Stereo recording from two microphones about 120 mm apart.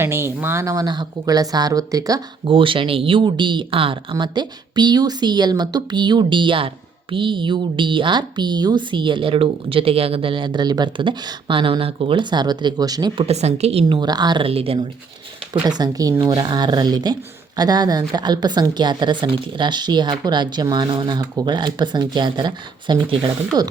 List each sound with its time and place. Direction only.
0.0 s speech: 20° right (ahead or behind)
2.5 s speech: 45° right (ahead or behind)
13.1 s a woman's voice: 60° right (ahead or behind)
14.0 s speech: 35° right (ahead or behind)
14.4 s speech: 50° right (ahead or behind)
15.6 s speech: 35° right (ahead or behind)